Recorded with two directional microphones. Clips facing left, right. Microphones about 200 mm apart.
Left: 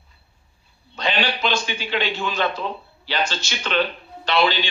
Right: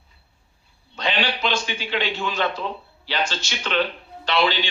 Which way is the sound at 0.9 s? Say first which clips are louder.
Left 1 dB; 45° left (ahead or behind).